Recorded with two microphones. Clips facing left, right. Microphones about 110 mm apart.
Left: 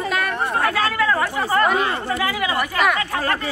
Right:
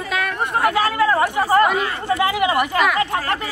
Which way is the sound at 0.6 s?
20° right (ahead or behind).